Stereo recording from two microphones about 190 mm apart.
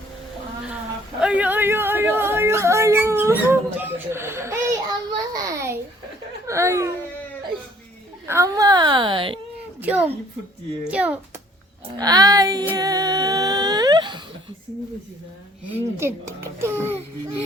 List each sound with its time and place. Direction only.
1.2 s yodeling: 5° right (ahead or behind)
6.5 s speech: 15° right (ahead or behind)
8.3 s speech: 15° right (ahead or behind)
9.8 s a child's voice: 10° right (ahead or behind)
11.9 s speech: 20° right (ahead or behind)
12.7 s humming: 20° right (ahead or behind)
15.7 s a child's voice: 10° right (ahead or behind)